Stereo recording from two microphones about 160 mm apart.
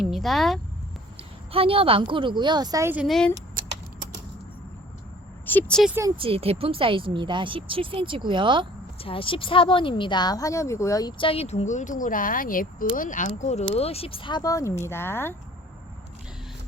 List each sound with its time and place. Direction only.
0.0 s speech: centre (ahead or behind)
1.1 s a woman's voice: 35° right (ahead or behind)
2.9 s speech: 5° right (ahead or behind)
5.5 s speech: 10° left (ahead or behind)
5.9 s speech: 20° right (ahead or behind)
6.1 s speech: 35° right (ahead or behind)
9.0 s a woman's voice: 35° left (ahead or behind); by 15.4 s 15° left (ahead or behind)